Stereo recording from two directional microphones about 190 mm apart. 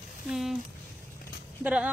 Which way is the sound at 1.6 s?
5° right (ahead or behind).